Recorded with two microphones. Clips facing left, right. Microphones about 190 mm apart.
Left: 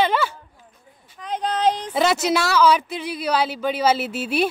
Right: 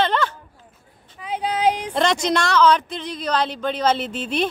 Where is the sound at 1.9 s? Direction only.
5° left (ahead or behind).